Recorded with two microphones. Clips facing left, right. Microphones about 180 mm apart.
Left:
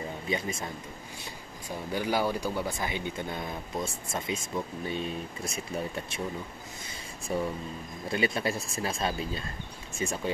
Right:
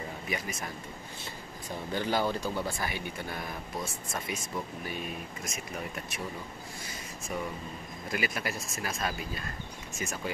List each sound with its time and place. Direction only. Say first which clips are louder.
0.3 s speech: left 5 dB; 25° left (ahead or behind)
1.9 s speech: left 1 dB; 10° left (ahead or behind); by 6.2 s 25° left (ahead or behind)
7.3 s speech: left 5 dB; 30° left (ahead or behind)